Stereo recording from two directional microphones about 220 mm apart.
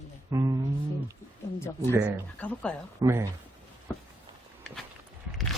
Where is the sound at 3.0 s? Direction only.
10° right (ahead or behind).